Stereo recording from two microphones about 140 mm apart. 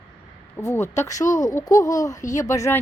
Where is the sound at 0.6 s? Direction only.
20° left (ahead or behind).